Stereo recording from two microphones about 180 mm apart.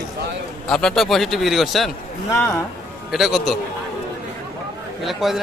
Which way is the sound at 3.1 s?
Centre (ahead or behind).